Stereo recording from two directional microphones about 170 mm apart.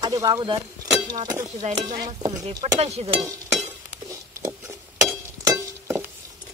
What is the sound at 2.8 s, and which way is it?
Speech, 40° right (ahead or behind).